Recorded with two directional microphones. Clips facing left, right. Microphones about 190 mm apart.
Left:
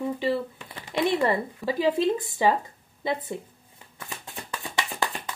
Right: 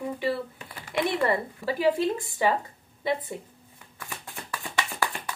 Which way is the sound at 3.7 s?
20° left (ahead or behind).